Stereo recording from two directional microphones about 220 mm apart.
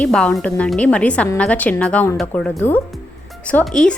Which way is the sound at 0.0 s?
5° left (ahead or behind).